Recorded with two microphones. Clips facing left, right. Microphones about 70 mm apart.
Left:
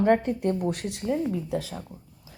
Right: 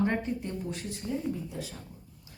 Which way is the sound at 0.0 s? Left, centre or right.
Left.